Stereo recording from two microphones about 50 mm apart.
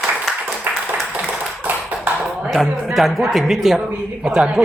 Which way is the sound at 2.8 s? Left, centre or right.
Centre.